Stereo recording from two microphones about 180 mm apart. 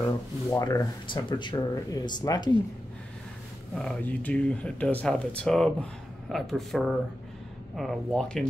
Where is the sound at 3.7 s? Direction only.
5° left (ahead or behind).